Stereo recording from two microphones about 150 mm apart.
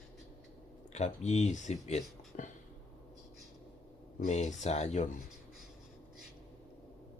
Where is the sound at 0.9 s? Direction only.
50° left (ahead or behind).